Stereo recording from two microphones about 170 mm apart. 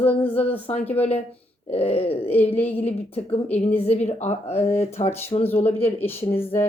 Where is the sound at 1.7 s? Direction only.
35° left (ahead or behind).